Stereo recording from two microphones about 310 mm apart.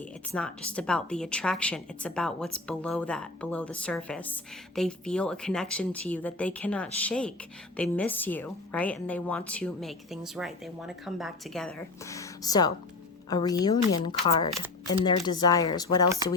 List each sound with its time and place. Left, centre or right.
0.0 s a woman's voice: centre